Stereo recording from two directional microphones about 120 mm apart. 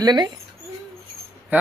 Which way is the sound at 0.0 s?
35° right (ahead or behind).